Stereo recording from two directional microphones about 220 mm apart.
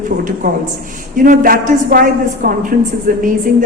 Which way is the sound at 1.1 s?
40° right (ahead or behind).